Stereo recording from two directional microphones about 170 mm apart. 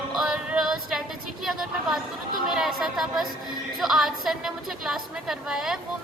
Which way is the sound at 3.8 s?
Centre (ahead or behind).